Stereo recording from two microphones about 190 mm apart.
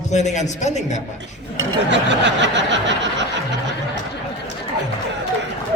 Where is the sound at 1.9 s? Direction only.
70° right (ahead or behind).